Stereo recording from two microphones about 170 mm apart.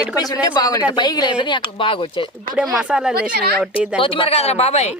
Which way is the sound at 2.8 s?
5° right (ahead or behind).